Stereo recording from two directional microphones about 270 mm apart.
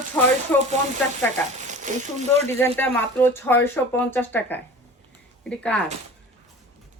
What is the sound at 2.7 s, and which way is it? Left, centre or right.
Speech, centre.